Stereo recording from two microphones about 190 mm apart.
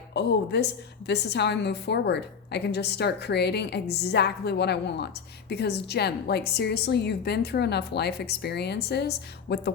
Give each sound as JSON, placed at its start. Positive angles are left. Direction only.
{"t": 0.1, "sound": "a woman's voice", "side_deg": 65}